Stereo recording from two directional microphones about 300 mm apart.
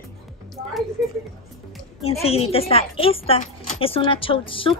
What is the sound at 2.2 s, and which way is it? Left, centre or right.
A woman's voice, centre.